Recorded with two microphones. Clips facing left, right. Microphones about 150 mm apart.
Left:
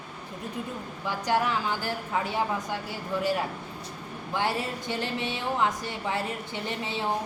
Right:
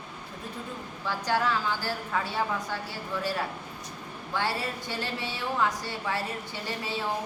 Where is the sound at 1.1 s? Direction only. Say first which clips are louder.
Left 1 dB; 15° left (ahead or behind).